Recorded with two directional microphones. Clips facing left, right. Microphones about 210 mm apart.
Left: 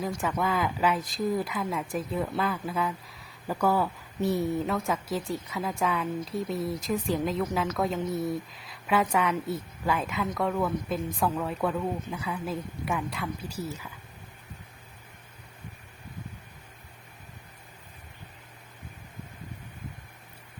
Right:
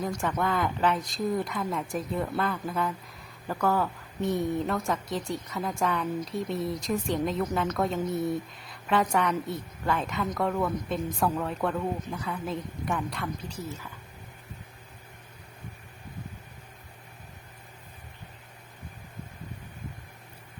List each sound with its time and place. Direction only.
0.0 s a woman's voice: centre (ahead or behind)